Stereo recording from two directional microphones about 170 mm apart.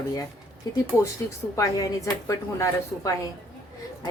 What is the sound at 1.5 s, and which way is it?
A woman's voice, 20° left (ahead or behind).